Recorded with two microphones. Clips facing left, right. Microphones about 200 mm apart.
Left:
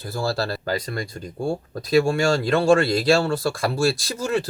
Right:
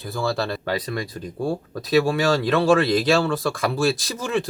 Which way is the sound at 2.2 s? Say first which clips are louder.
Even; 30° left (ahead or behind).